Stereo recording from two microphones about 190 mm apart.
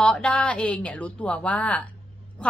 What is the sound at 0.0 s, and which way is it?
A woman's voice, 5° left (ahead or behind).